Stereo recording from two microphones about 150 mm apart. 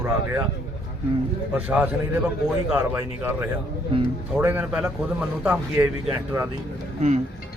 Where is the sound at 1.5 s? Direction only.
10° right (ahead or behind).